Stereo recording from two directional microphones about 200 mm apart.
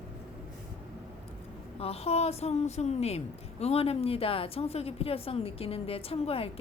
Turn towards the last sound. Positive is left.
turn(degrees=30)  # may be behind; listen again after turning